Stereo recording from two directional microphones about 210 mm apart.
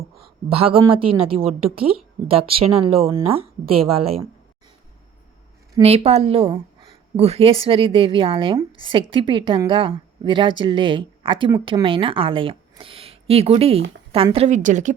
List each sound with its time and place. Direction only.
0.4 s a woman's voice: 25° right (ahead or behind)
5.8 s a woman's voice: 30° right (ahead or behind)